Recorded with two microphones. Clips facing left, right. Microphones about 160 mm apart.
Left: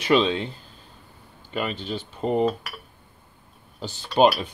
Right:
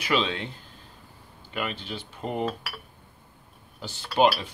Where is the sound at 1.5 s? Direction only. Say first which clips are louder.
Left 4 dB; 25° left (ahead or behind).